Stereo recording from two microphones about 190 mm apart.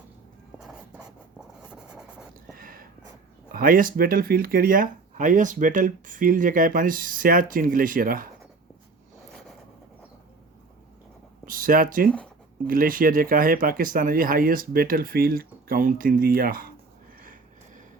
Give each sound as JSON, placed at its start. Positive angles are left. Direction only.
{"t": 0.6, "sound": "writing", "side_deg": -5}
{"t": 2.6, "sound": "a sound", "side_deg": -50}
{"t": 3.5, "sound": "speech", "side_deg": -50}
{"t": 11.4, "sound": "a sound", "side_deg": -45}
{"t": 12.0, "sound": "speech", "side_deg": 5}
{"t": 12.6, "sound": "speech", "side_deg": -50}